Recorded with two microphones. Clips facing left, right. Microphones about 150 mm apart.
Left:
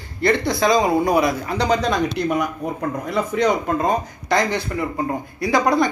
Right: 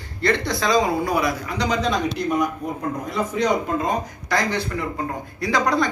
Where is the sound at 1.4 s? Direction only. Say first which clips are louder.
Left 3 dB; 35° left (ahead or behind).